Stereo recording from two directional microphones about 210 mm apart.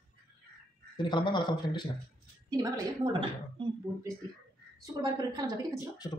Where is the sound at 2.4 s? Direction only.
20° right (ahead or behind).